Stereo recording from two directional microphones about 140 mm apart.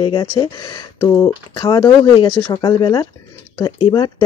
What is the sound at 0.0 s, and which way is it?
Speech, 35° left (ahead or behind).